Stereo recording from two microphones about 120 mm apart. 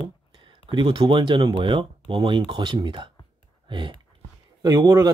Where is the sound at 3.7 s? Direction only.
40° right (ahead or behind).